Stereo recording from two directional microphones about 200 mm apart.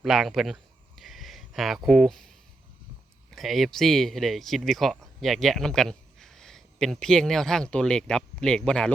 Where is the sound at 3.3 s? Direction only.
Centre (ahead or behind).